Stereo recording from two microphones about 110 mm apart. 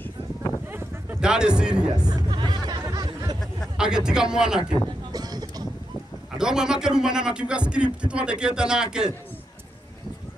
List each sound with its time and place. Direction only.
1.2 s a man's voice: 5° right (ahead or behind)
2.0 s music: 40° right (ahead or behind)
3.3 s speech: 5° right (ahead or behind)
4.6 s a sound: 40° right (ahead or behind)
6.3 s a man's voice: 5° right (ahead or behind)